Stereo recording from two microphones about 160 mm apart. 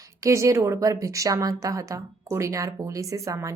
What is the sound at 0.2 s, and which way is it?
A woman's voice, 20° right (ahead or behind).